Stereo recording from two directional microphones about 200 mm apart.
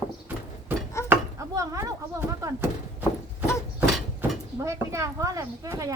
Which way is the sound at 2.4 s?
15° right (ahead or behind).